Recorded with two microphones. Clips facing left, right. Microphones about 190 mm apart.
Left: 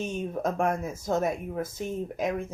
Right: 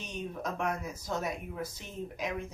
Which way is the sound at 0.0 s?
50° left (ahead or behind).